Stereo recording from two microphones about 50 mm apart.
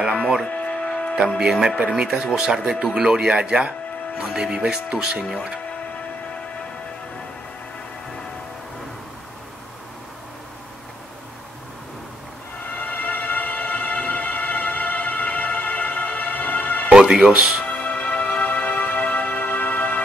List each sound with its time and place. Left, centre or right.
0.1 s music: centre
0.5 s music: left
1.4 s speech: centre
12.7 s music: left
16.9 s music: centre
17.6 s music: left